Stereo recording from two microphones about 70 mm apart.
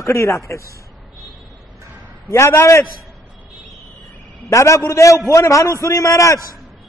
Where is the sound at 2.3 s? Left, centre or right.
Left.